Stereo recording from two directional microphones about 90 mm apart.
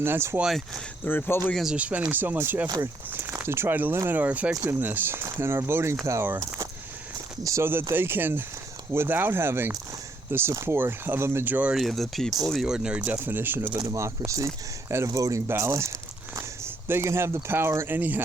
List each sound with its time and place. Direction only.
0.0 s speech: 30° right (ahead or behind)
0.4 s speech: centre (ahead or behind)
1.0 s speech: 20° left (ahead or behind)
1.7 s speech: 15° right (ahead or behind)
11.7 s speech: centre (ahead or behind); by 13.7 s 25° right (ahead or behind)
14.3 s speech: 35° right (ahead or behind)